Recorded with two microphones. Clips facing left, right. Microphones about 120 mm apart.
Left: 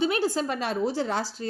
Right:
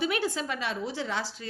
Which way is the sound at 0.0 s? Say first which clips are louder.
Left 4 dB; 30° left (ahead or behind).